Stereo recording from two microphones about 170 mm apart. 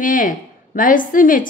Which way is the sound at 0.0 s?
50° left (ahead or behind).